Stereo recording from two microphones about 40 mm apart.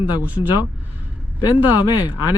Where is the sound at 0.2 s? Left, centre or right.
Right.